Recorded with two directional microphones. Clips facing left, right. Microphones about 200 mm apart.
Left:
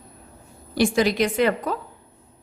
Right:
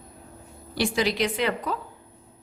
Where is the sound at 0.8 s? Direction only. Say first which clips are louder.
Left 5 dB; 50° left (ahead or behind).